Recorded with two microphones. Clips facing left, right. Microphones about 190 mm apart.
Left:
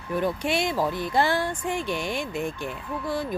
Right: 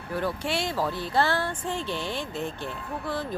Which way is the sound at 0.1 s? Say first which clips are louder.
Left 3 dB; 15° left (ahead or behind).